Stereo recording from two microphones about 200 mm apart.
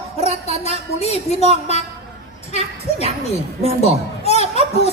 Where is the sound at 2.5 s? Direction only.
35° left (ahead or behind).